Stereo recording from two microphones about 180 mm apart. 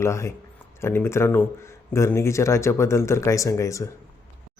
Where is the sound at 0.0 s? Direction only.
15° left (ahead or behind).